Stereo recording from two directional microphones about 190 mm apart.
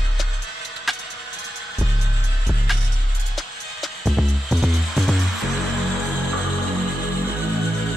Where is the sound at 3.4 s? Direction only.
Centre (ahead or behind).